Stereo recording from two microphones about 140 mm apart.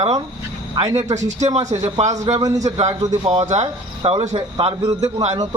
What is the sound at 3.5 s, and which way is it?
Speech, 50° right (ahead or behind).